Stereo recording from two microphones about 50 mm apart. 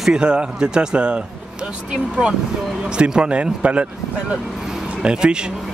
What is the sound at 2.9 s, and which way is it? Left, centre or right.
Speech, centre.